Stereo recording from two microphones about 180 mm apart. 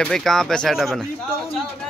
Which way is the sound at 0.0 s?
Centre (ahead or behind).